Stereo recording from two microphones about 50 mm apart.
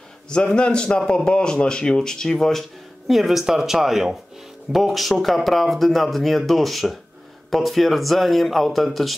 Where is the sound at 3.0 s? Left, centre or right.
Centre.